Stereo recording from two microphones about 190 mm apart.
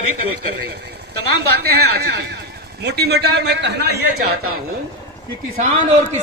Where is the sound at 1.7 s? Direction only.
60° right (ahead or behind).